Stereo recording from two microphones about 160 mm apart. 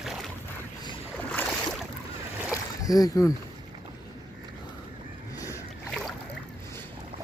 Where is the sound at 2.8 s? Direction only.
20° left (ahead or behind).